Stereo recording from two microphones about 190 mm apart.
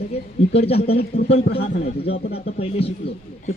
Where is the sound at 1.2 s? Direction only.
55° left (ahead or behind).